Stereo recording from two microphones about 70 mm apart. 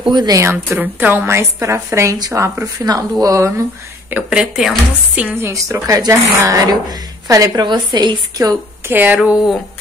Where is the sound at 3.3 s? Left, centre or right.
Right.